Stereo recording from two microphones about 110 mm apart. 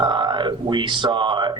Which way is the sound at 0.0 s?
40° right (ahead or behind).